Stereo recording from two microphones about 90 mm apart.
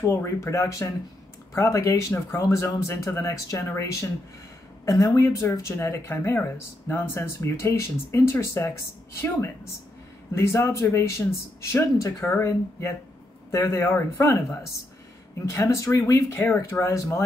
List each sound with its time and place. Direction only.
0.0 s speech: 30° left (ahead or behind)
10.3 s speech: 30° left (ahead or behind)
15.4 s speech: 35° left (ahead or behind)
16.3 s speech: 30° left (ahead or behind)